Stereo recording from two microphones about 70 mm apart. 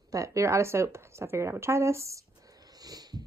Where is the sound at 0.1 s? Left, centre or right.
Right.